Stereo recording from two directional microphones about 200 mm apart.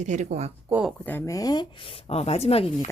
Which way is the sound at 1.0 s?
10° left (ahead or behind).